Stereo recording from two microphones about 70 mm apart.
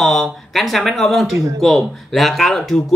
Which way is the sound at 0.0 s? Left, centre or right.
Centre.